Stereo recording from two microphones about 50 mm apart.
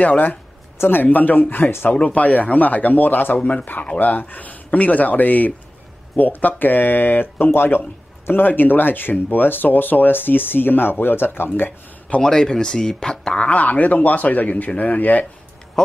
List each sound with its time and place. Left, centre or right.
0.0 s speech: left
0.7 s speech: left
2.0 s speech: left
12.2 s speech: centre; by 15.2 s left